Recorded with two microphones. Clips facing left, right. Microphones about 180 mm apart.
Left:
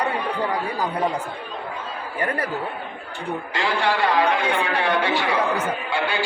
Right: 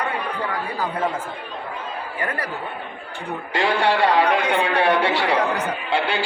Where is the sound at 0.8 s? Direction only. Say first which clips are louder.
Right 1 dB; 15° left (ahead or behind).